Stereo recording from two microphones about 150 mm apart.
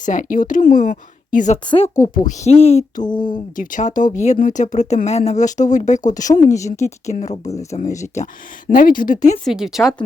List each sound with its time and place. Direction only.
0.0 s speech: 60° left (ahead or behind)
3.5 s speech: 60° left (ahead or behind)
8.7 s speech: 65° left (ahead or behind)
9.4 s speech: centre (ahead or behind)